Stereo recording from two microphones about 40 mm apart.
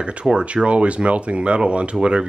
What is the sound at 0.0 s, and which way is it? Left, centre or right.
Speech, right.